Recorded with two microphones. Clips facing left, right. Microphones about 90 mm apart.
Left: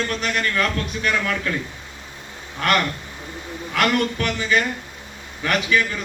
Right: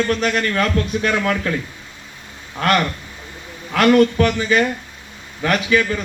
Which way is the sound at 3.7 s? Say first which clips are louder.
Right 8 dB; 35° right (ahead or behind).